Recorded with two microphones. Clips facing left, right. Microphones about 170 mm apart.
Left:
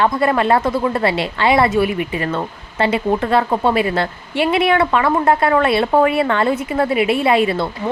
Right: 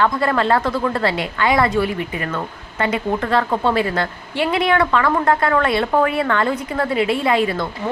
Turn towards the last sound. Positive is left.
turn(degrees=30)  # may be behind; listen again after turning